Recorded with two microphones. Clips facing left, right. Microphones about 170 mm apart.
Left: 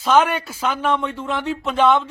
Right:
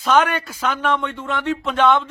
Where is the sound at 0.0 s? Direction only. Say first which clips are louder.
Left 1 dB; centre (ahead or behind).